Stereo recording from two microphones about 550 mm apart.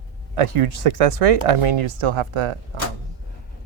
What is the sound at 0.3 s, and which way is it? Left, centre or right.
Speech, right.